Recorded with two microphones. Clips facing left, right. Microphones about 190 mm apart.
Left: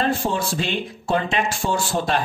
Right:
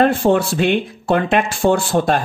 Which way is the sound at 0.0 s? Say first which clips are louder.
Right 8 dB; 60° right (ahead or behind).